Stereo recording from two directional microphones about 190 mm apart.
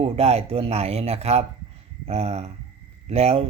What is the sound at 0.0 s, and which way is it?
Speech, 30° right (ahead or behind).